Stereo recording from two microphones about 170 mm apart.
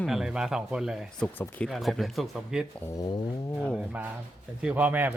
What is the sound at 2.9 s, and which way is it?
Speech, 20° left (ahead or behind).